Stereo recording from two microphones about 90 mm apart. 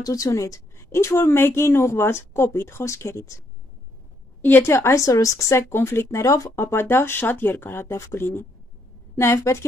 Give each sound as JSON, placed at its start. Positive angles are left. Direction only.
{"t": 0.0, "sound": "a woman's voice", "side_deg": 40}
{"t": 4.4, "sound": "a woman's voice", "side_deg": 20}